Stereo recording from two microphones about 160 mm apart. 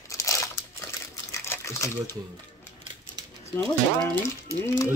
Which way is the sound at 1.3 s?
15° left (ahead or behind).